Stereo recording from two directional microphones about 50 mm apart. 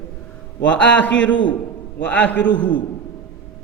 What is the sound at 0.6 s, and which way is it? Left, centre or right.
A man's voice, left.